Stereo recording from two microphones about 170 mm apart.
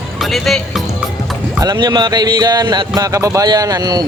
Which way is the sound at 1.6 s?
25° right (ahead or behind).